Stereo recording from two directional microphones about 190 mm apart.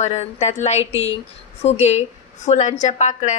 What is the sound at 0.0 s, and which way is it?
A woman's voice, 35° left (ahead or behind).